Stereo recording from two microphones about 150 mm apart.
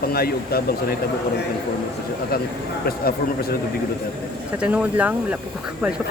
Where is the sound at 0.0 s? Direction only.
90° left.